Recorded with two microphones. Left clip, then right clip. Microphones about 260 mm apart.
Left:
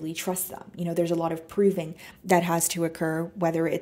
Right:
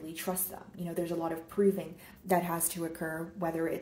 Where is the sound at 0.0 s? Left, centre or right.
Left.